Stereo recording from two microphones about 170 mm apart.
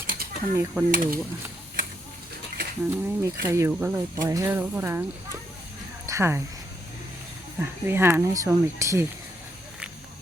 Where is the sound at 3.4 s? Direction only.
15° right (ahead or behind).